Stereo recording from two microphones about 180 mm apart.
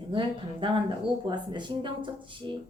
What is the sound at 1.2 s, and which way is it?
A woman's voice, 25° right (ahead or behind).